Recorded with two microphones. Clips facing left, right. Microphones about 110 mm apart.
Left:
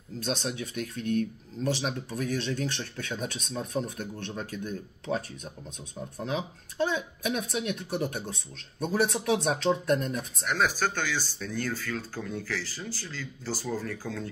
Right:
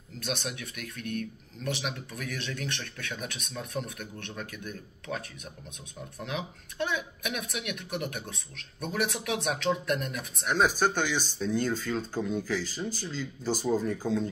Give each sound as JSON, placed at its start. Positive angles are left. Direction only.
{"t": 0.2, "sound": "speech", "side_deg": 30}
{"t": 10.4, "sound": "speech", "side_deg": -20}